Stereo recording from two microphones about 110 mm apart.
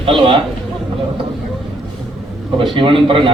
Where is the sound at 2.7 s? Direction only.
50° right (ahead or behind).